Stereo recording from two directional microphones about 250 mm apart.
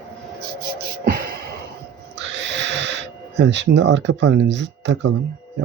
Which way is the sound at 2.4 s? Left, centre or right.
Right.